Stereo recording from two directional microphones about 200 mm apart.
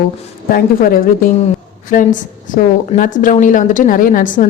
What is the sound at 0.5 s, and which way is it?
A woman's voice, 45° left (ahead or behind).